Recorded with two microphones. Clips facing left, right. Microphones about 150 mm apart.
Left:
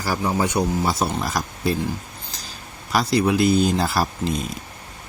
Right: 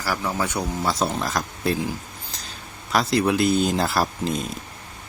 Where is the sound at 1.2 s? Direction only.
5° left (ahead or behind).